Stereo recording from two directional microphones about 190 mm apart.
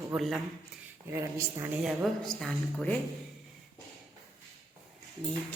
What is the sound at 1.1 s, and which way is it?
Speech, 15° right (ahead or behind).